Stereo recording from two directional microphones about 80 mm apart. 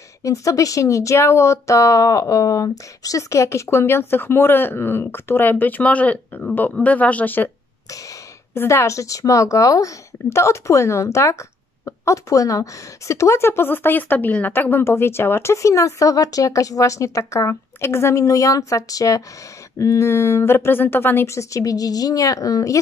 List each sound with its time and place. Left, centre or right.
0.2 s speech: left
8.5 s speech: left